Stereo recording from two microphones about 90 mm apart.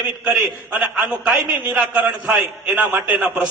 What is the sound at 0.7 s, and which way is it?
A man's voice, 15° right (ahead or behind).